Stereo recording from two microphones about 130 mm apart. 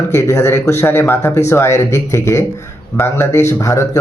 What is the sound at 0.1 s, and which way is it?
Speech, 25° left (ahead or behind).